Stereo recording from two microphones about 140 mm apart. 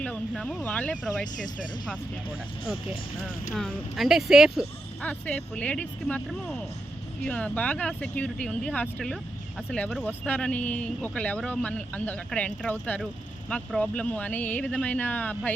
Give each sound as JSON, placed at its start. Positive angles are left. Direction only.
{"t": 0.0, "sound": "speech", "side_deg": 5}
{"t": 3.5, "sound": "speech", "side_deg": 0}
{"t": 5.0, "sound": "speech", "side_deg": 10}